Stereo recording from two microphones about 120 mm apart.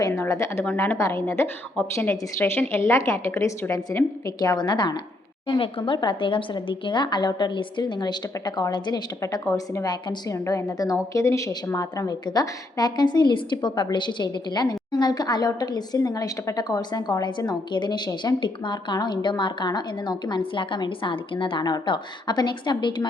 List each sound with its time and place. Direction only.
0.0 s a woman's voice: 25° left (ahead or behind)
0.6 s a woman's voice: 15° left (ahead or behind)
4.4 s a woman's voice: 35° left (ahead or behind)
9.9 s a woman's voice: 40° left (ahead or behind)
10.3 s a woman's voice: 25° left (ahead or behind)